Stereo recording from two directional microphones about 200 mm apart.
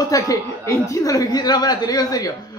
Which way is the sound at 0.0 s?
15° left (ahead or behind).